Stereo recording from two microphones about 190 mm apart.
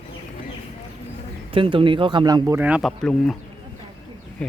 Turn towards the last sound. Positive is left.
turn(degrees=5)  # may be behind; listen again after turning